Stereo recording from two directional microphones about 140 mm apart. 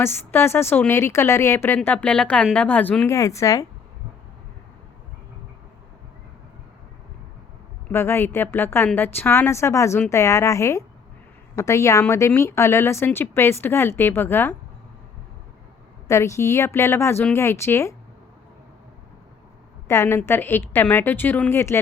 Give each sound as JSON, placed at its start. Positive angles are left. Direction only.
{"t": 0.0, "sound": "a woman's voice", "side_deg": 15}
{"t": 3.1, "sound": "a woman's voice", "side_deg": 20}
{"t": 7.9, "sound": "a woman's voice", "side_deg": 15}
{"t": 16.0, "sound": "a woman's voice", "side_deg": 20}
{"t": 19.9, "sound": "a woman's voice", "side_deg": 20}